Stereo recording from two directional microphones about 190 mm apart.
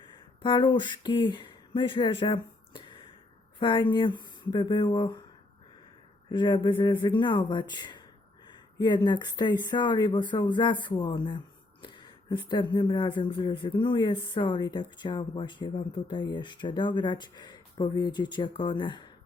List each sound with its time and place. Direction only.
0.0 s speech: 25° left (ahead or behind)
6.3 s speech: 25° left (ahead or behind)